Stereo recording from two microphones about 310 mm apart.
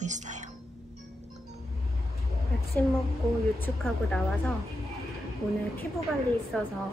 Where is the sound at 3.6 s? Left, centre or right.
Centre.